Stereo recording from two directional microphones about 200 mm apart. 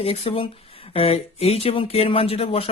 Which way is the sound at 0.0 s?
30° left (ahead or behind).